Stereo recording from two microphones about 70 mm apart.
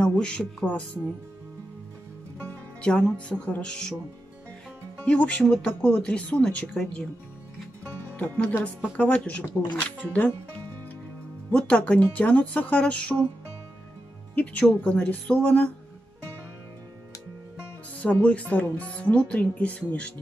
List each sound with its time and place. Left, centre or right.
0.0 s speech: centre
2.8 s speech: centre
5.0 s speech: centre
5.7 s speech: left
8.2 s speech: centre
11.5 s speech: centre
14.3 s speech: centre
17.9 s speech: left